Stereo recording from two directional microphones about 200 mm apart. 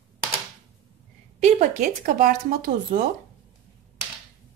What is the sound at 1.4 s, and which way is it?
Speech, 35° right (ahead or behind).